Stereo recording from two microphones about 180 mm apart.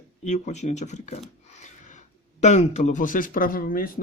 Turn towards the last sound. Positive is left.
turn(degrees=50)  # may be behind; listen again after turning